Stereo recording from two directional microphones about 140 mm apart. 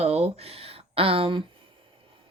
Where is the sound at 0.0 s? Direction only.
45° right (ahead or behind).